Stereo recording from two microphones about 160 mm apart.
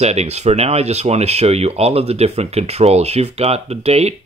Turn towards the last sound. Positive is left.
turn(degrees=-40)  # may be behind; listen again after turning